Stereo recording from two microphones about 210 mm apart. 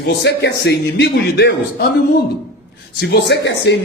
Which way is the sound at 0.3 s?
50° left (ahead or behind).